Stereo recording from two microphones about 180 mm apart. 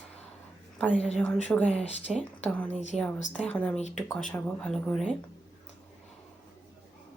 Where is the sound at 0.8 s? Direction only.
5° left (ahead or behind).